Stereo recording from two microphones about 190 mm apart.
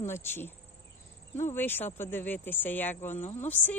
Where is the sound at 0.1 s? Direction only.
10° left (ahead or behind).